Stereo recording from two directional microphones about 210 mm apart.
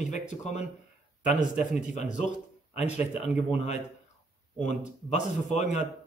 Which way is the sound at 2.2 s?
30° left (ahead or behind).